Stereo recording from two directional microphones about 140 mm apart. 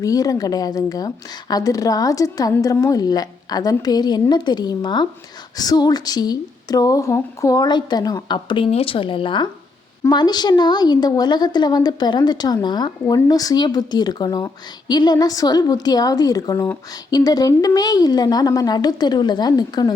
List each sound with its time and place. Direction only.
0.0 s a woman's voice: 25° left (ahead or behind)